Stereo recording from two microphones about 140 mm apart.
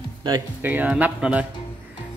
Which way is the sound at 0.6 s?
10° right (ahead or behind).